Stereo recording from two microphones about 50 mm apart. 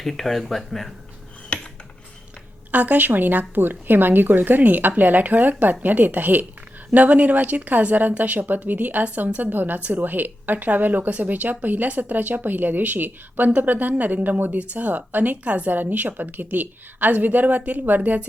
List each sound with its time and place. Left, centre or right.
0.0 s speech: centre
1.5 s a sound: left
2.7 s a woman's voice: right